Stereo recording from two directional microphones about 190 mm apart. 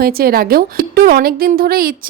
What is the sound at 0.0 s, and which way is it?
A woman's voice, 50° right (ahead or behind).